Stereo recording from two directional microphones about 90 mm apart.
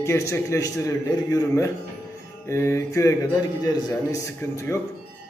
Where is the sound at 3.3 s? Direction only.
45° left (ahead or behind).